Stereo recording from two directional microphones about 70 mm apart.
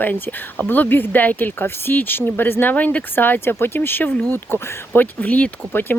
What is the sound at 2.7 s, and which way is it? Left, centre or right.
Speech, centre.